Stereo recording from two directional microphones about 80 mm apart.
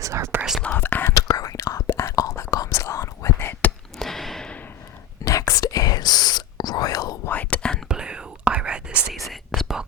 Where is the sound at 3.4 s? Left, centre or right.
Left.